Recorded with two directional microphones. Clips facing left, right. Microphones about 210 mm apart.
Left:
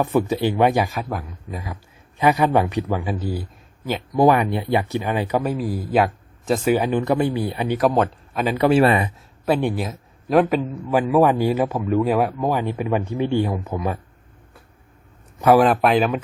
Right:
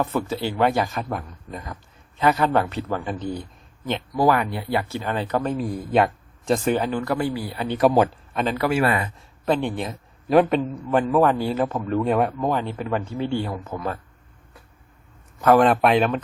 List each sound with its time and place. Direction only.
0.0 s speech: 15° left (ahead or behind)
4.1 s speech: 20° left (ahead or behind)
7.7 s a man's voice: centre (ahead or behind)
8.5 s speech: 30° left (ahead or behind)
9.1 s speech: 10° left (ahead or behind)
15.4 s a man's voice: 10° left (ahead or behind)